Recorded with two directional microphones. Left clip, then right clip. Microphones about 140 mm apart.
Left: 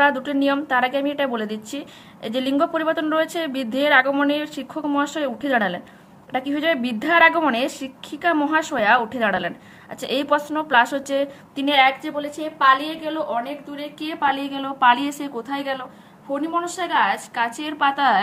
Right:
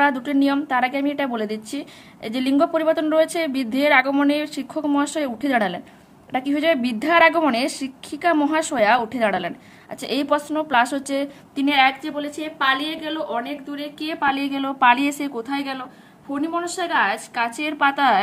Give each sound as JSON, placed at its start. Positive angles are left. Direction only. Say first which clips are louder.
{"t": 0.0, "sound": "a woman's voice", "louder": "left 1 dB", "side_deg": -35}